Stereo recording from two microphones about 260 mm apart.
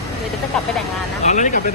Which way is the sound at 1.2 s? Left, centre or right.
Left.